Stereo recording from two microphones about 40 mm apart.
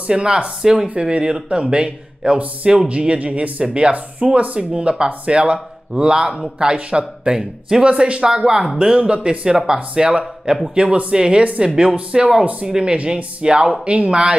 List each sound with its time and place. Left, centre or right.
0.1 s speech: right